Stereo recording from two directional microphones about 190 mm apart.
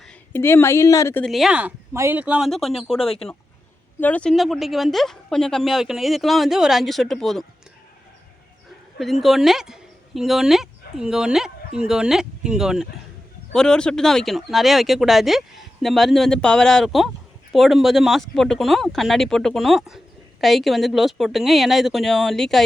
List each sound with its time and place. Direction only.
0.0 s speech: 10° left (ahead or behind)
1.2 s speech: centre (ahead or behind)
3.0 s speech: 30° left (ahead or behind)
4.0 s speech: 5° left (ahead or behind)
9.0 s speech: centre (ahead or behind)